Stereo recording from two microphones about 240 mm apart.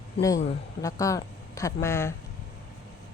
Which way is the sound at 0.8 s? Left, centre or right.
Centre.